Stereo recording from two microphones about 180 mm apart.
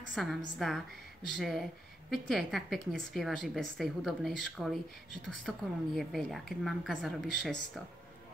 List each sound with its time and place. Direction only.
0.1 s a woman's voice: centre (ahead or behind)